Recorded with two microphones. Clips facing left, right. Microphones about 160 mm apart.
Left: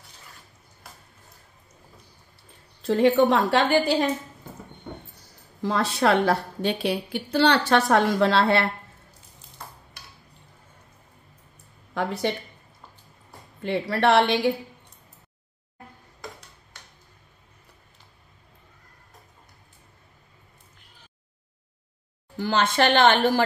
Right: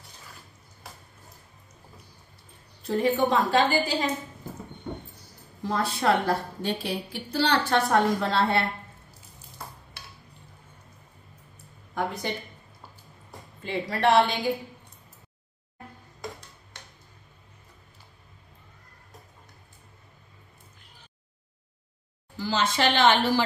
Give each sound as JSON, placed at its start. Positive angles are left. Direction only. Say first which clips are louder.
{"t": 2.8, "sound": "a woman's voice", "louder": "left 5 dB", "side_deg": 80}
{"t": 5.6, "sound": "a woman's voice", "louder": "left 4 dB", "side_deg": 80}
{"t": 11.9, "sound": "speech", "louder": "left 4 dB", "side_deg": 75}
{"t": 13.6, "sound": "a woman's voice", "louder": "left 4 dB", "side_deg": 70}
{"t": 22.4, "sound": "a woman's voice", "louder": "left 3 dB", "side_deg": 55}